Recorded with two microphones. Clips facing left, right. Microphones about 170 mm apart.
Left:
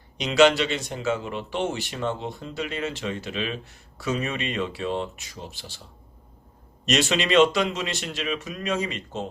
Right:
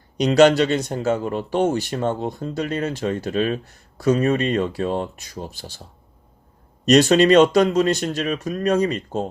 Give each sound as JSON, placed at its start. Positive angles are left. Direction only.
{"t": 0.2, "sound": "speech", "side_deg": -40}
{"t": 6.8, "sound": "speech", "side_deg": -40}